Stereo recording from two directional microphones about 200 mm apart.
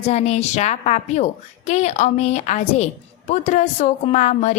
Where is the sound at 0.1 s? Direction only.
35° left (ahead or behind).